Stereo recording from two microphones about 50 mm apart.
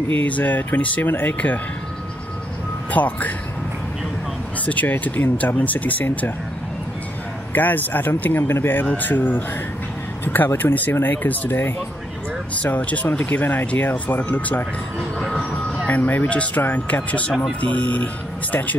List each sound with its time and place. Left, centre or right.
0.1 s speech: left
1.0 s speech: left
2.9 s speech: left
4.6 s speech: left
5.2 s speech: left
5.6 s speech: left
7.5 s speech: left
12.6 s speech: left
13.3 s speech: left
15.0 s train: centre
15.9 s speech: left
16.3 s speech: left